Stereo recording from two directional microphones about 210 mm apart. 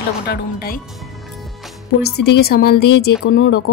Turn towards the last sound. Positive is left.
turn(degrees=50)  # may be behind; listen again after turning